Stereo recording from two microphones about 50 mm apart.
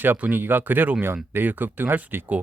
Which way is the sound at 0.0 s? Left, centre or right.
Right.